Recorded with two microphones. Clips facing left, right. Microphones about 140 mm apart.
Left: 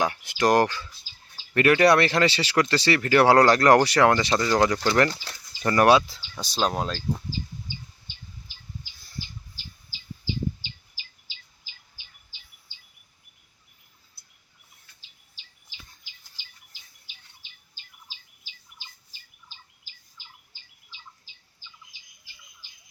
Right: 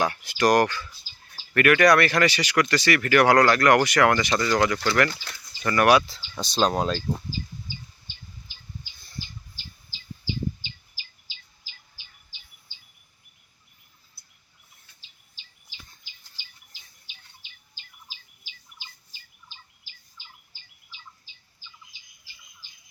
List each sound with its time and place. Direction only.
0.0 s speech: 20° left (ahead or behind)
5.1 s speech: 30° left (ahead or behind)
6.0 s speech: 5° left (ahead or behind)